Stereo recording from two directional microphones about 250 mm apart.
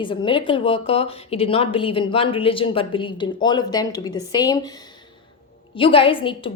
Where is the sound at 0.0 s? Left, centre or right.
Centre.